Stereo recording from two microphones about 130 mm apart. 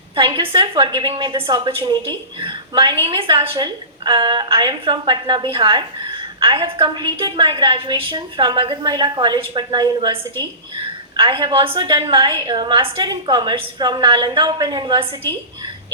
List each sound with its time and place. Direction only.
0.2 s a woman's voice: 40° right (ahead or behind)
11.2 s a woman's voice: 40° right (ahead or behind)